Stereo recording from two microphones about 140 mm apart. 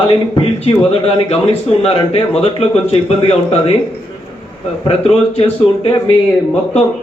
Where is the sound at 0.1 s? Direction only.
45° left (ahead or behind).